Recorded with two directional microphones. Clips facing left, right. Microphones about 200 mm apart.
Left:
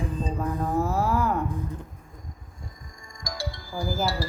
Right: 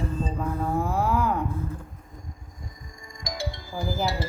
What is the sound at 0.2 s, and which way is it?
Music, 10° left (ahead or behind).